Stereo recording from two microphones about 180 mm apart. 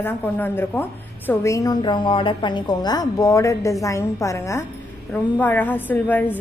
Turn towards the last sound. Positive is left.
turn(degrees=10)  # may be behind; listen again after turning